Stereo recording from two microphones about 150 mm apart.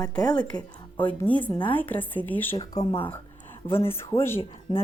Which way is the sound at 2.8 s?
40° left (ahead or behind).